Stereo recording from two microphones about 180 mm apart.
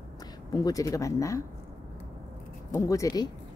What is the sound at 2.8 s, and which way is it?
Speech, 15° left (ahead or behind).